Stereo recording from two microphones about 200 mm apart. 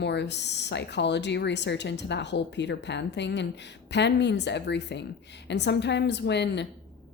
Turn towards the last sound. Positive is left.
turn(degrees=60)  # may be behind; listen again after turning